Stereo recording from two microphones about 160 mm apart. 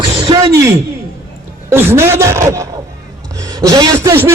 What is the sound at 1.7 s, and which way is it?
Speech, 15° right (ahead or behind).